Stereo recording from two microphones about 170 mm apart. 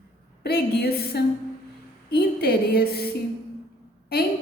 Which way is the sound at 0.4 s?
70° left (ahead or behind).